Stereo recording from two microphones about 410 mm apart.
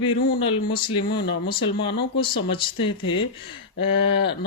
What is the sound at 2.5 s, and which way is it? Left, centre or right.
Speech, centre.